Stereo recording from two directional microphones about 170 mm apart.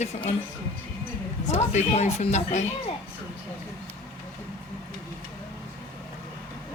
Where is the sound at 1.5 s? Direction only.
40° left (ahead or behind).